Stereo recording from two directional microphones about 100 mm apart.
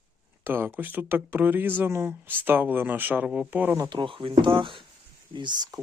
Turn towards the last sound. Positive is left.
turn(degrees=-45)  # may be behind; listen again after turning